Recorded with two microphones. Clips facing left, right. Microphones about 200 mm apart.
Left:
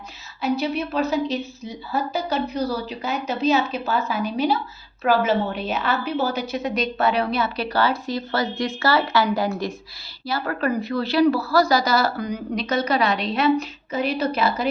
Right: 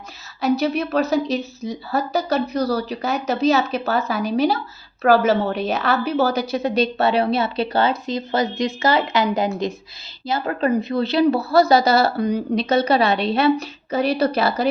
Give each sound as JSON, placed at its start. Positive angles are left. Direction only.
{"t": 0.4, "sound": "a woman's voice", "side_deg": -40}